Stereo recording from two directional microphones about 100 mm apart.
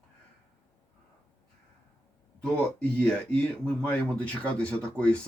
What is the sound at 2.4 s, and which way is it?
A man's voice, 10° left (ahead or behind).